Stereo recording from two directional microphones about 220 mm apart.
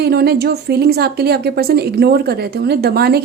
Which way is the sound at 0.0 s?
45° right (ahead or behind).